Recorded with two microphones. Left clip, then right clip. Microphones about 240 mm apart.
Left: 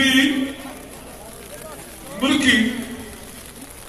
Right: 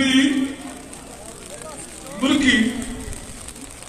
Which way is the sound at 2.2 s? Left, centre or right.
Left.